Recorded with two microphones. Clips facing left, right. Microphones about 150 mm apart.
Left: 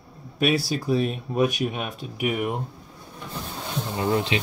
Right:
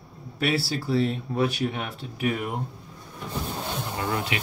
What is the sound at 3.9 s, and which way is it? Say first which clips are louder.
Speech: left 6 dB; 25° left (ahead or behind).